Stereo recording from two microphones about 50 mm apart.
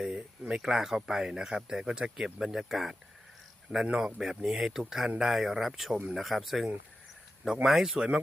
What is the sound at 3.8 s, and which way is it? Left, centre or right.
Speech, centre.